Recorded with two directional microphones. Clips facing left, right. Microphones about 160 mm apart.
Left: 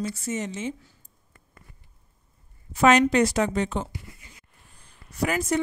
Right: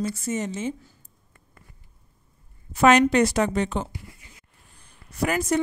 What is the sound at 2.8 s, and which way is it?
A woman's voice, 60° right (ahead or behind).